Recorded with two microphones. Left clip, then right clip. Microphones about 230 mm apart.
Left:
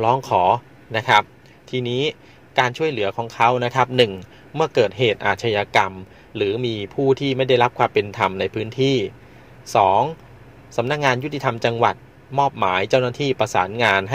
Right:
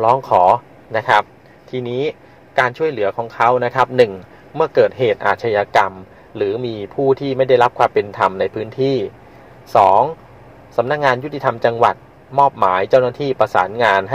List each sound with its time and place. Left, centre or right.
0.0 s a man's voice: left